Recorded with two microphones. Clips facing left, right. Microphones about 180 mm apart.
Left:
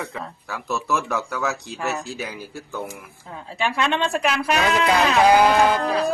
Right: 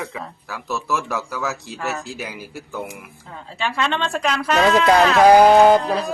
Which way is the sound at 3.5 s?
15° left (ahead or behind).